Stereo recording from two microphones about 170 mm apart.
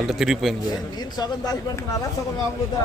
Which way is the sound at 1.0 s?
25° left (ahead or behind).